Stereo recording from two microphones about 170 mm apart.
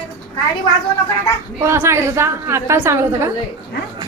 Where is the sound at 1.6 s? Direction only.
15° right (ahead or behind).